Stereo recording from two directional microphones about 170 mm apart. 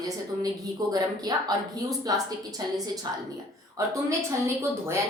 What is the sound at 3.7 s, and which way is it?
Speech, 20° right (ahead or behind).